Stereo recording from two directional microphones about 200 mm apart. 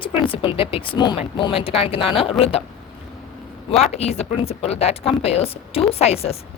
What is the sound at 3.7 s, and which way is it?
Speech, 30° left (ahead or behind).